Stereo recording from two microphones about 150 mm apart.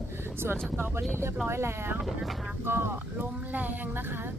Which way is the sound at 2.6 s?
15° right (ahead or behind).